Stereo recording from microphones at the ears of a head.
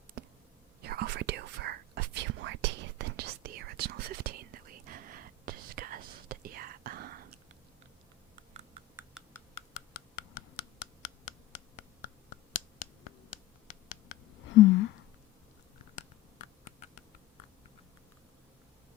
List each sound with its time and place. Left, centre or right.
0.8 s whispering: right
9.6 s hands: left
15.8 s a sound: left